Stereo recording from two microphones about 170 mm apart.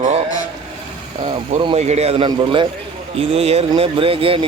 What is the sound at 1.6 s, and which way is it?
Speech, 35° right (ahead or behind).